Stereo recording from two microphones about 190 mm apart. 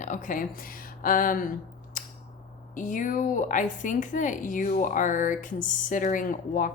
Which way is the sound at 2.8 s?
40° left (ahead or behind).